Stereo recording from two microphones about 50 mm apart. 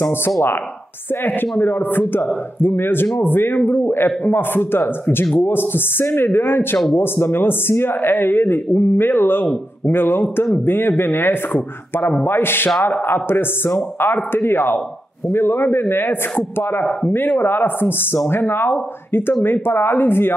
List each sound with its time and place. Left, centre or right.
0.0 s speech: left